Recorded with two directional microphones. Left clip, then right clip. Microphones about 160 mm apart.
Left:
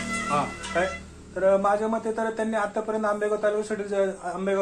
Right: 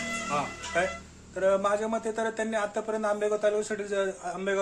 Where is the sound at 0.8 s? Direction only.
20° right (ahead or behind).